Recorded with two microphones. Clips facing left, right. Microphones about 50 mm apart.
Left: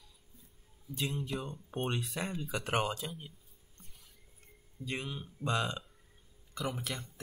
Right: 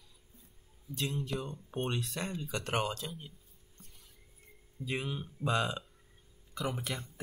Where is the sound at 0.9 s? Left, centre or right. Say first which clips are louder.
Right 1 dB; centre.